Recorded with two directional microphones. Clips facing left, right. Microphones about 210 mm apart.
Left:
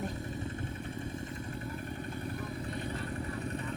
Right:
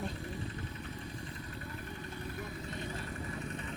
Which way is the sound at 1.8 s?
50° left (ahead or behind).